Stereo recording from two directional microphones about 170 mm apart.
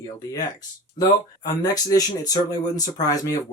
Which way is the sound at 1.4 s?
20° left (ahead or behind).